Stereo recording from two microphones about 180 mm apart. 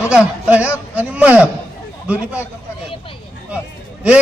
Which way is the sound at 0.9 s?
10° right (ahead or behind).